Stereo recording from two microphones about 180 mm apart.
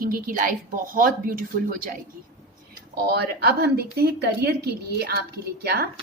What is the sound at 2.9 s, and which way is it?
A woman's voice, 60° right (ahead or behind).